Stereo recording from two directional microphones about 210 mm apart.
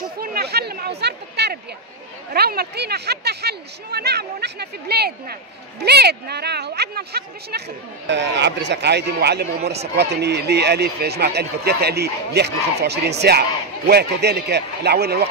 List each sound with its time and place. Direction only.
0.2 s chatter: 45° right (ahead or behind)
2.3 s speech: 50° right (ahead or behind)